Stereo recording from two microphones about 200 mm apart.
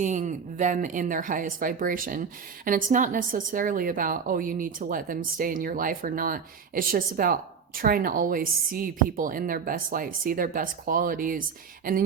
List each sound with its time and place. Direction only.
0.0 s a woman's voice: 40° right (ahead or behind)